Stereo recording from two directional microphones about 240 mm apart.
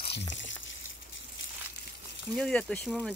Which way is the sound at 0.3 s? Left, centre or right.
Left.